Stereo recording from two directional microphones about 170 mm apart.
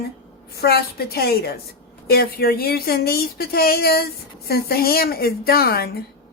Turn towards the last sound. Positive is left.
turn(degrees=65)  # may be behind; listen again after turning